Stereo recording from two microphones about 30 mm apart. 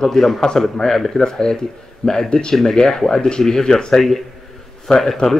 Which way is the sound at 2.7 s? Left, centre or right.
Centre.